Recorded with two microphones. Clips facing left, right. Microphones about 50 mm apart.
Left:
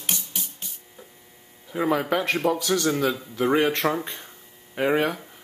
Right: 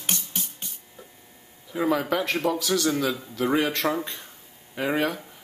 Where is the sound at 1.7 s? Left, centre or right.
Centre.